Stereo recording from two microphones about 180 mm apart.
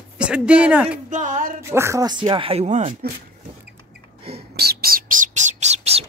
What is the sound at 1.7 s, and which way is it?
Speech, 15° right (ahead or behind).